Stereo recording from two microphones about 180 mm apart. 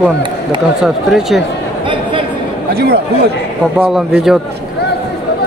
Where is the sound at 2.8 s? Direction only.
60° right (ahead or behind).